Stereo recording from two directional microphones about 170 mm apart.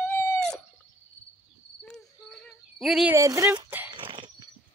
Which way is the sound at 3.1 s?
15° right (ahead or behind).